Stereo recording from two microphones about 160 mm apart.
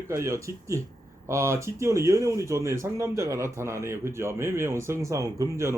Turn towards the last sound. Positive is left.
turn(degrees=-15)  # may be behind; listen again after turning